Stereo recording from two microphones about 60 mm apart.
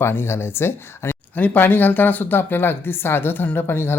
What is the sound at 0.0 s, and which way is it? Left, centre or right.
Speech, left.